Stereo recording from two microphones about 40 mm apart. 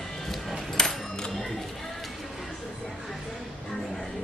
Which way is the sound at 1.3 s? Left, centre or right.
Centre.